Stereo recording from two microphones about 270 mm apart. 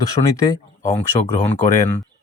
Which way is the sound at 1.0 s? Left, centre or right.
Centre.